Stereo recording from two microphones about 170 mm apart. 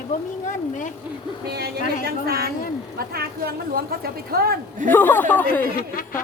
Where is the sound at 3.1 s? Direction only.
65° right (ahead or behind).